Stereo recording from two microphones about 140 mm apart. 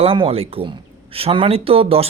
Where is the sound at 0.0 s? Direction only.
40° right (ahead or behind).